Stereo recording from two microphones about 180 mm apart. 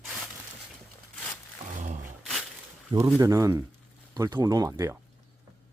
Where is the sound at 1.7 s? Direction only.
45° right (ahead or behind).